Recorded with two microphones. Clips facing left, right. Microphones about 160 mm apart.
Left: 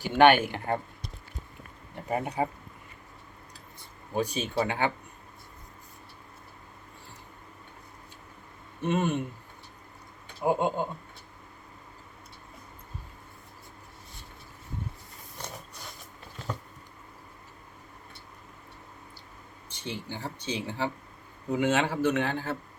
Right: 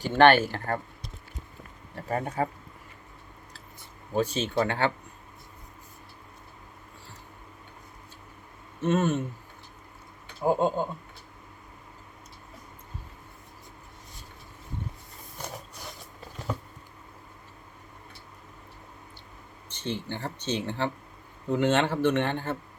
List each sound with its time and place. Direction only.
0.0 s speech: 10° left (ahead or behind)
2.0 s speech: 15° left (ahead or behind)
4.1 s speech: 15° left (ahead or behind)
8.8 s speech: 15° left (ahead or behind)
10.4 s speech: 15° left (ahead or behind)
19.7 s speech: 10° left (ahead or behind)